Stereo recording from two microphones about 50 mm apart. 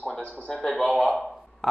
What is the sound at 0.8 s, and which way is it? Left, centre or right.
Speech, centre.